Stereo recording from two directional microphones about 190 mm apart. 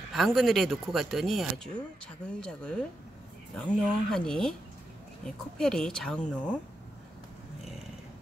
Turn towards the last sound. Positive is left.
turn(degrees=5)  # may be behind; listen again after turning